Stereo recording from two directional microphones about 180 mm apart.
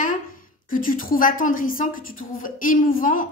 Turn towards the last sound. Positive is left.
turn(degrees=50)  # may be behind; listen again after turning